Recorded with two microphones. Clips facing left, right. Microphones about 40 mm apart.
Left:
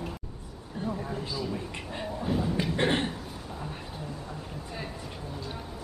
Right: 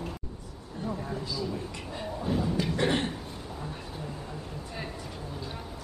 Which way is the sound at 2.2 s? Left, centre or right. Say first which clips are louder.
Even; centre.